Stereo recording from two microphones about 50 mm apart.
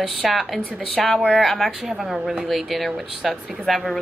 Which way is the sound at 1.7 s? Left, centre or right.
Centre.